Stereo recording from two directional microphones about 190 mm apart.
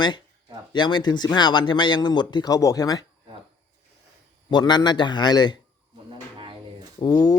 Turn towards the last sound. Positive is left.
turn(degrees=20)  # may be behind; listen again after turning